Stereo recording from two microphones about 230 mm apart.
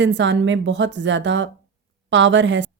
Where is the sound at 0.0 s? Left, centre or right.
Right.